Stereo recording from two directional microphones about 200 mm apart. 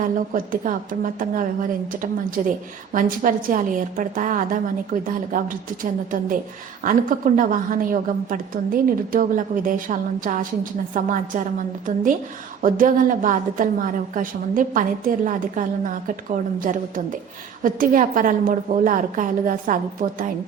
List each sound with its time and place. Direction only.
0.0 s a woman's voice: 45° right (ahead or behind)
12.6 s a woman's voice: 45° right (ahead or behind)